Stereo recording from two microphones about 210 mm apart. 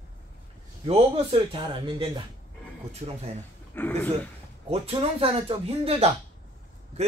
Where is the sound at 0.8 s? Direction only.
30° right (ahead or behind).